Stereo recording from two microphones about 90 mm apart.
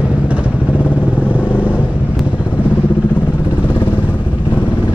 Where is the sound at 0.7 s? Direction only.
20° left (ahead or behind).